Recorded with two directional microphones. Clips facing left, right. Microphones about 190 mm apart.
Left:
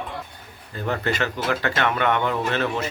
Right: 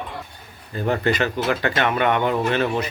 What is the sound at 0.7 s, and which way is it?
Speech, 15° right (ahead or behind).